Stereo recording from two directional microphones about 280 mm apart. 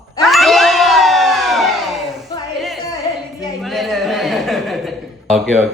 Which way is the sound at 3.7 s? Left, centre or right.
Centre.